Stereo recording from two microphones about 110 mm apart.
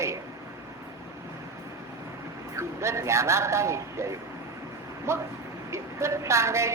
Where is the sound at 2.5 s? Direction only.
25° right (ahead or behind).